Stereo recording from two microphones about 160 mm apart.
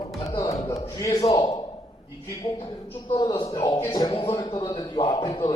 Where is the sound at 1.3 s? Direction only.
40° left (ahead or behind).